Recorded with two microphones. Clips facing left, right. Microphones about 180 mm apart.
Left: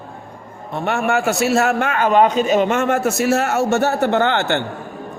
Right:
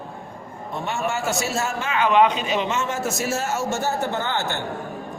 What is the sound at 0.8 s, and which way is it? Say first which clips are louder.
A man's voice: left 7 dB; 60° left (ahead or behind).